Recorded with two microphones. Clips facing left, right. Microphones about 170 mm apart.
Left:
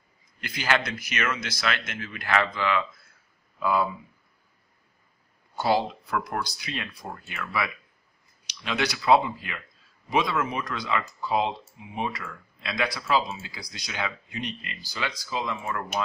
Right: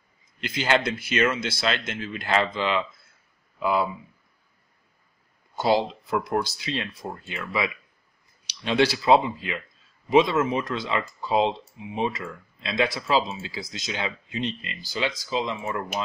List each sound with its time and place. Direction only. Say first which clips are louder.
0.4 s speech: right 3 dB; 25° right (ahead or behind)
5.6 s speech: right 2 dB; 20° right (ahead or behind)